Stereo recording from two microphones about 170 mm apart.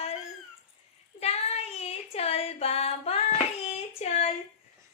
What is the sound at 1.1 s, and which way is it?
Child singing, 40° left (ahead or behind).